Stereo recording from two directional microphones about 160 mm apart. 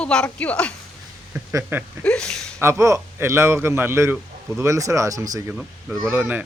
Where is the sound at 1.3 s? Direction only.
10° right (ahead or behind).